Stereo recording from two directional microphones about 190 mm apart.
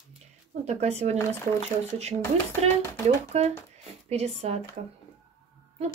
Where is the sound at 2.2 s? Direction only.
15° left (ahead or behind).